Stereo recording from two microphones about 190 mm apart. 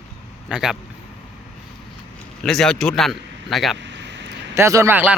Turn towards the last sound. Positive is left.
turn(degrees=-10)  # may be behind; listen again after turning